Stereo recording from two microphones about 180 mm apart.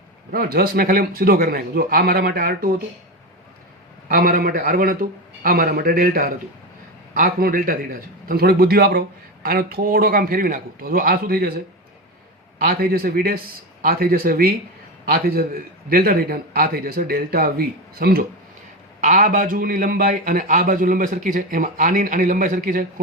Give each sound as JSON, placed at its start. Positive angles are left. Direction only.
{"t": 0.3, "sound": "speech", "side_deg": -55}
{"t": 4.1, "sound": "a man's voice", "side_deg": -55}
{"t": 19.0, "sound": "a man's voice", "side_deg": -45}